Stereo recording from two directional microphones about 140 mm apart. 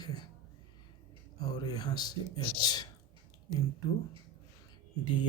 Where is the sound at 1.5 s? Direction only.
30° left (ahead or behind).